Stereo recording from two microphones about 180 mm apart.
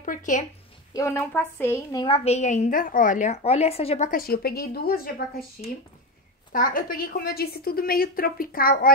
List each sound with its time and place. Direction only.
0.0 s a sound: 45° left (ahead or behind)
0.9 s a woman's voice: 15° left (ahead or behind); by 4.1 s 35° left (ahead or behind)
4.1 s a woman's voice: 55° left (ahead or behind)